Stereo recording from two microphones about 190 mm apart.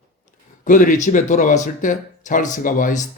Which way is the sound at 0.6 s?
40° left (ahead or behind).